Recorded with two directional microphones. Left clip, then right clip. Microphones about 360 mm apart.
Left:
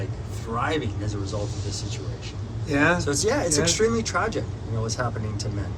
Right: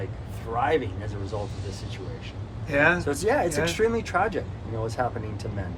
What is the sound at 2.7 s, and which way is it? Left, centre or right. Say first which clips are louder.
Speech: even; centre.